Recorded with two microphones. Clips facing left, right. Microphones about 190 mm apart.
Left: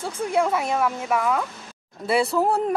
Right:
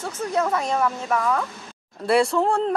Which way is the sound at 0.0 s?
15° left (ahead or behind).